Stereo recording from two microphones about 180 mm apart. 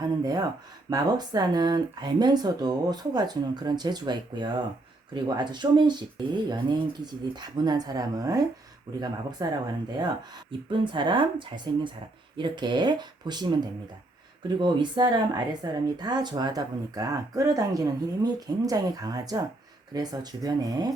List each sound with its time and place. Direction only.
0.0 s speech: 20° right (ahead or behind)
10.7 s speech: 25° right (ahead or behind)